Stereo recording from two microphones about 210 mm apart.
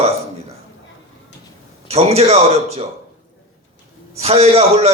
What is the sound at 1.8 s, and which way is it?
Speech, 30° right (ahead or behind).